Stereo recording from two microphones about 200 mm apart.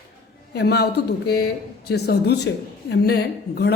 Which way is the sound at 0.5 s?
55° left (ahead or behind).